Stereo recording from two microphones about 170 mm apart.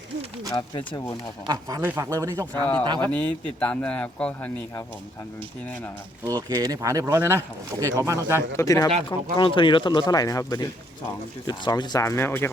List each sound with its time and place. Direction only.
0.5 s speech: 25° left (ahead or behind)
1.5 s speech: 20° right (ahead or behind)
3.1 s speech: 10° left (ahead or behind)
6.2 s speech: 20° right (ahead or behind)
8.4 s speech: 20° left (ahead or behind)